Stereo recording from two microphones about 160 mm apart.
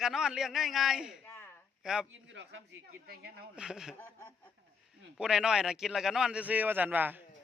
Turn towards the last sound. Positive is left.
turn(degrees=-10)  # may be behind; listen again after turning